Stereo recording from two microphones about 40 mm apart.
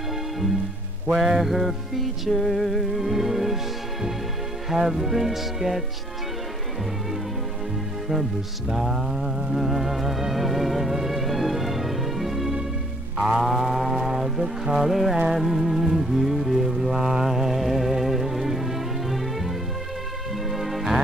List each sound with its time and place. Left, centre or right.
1.1 s music: centre
4.7 s music: centre
8.1 s music: centre
20.5 s music: centre